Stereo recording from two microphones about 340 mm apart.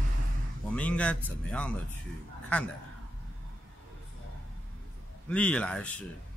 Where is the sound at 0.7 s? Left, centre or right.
Centre.